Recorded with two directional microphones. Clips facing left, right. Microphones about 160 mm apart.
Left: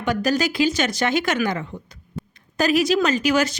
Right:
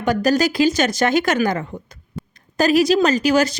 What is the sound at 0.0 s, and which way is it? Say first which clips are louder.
Speech: right 4 dB; 40° right (ahead or behind).